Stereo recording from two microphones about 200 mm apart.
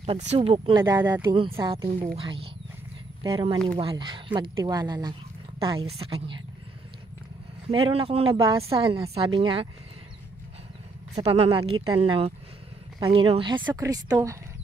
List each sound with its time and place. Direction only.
0.0 s speech: 30° right (ahead or behind)
1.0 s speech: 10° right (ahead or behind)
1.6 s speech: 25° right (ahead or behind)
7.7 s speech: 25° right (ahead or behind)
11.1 s speech: 30° right (ahead or behind); by 14.4 s 15° right (ahead or behind)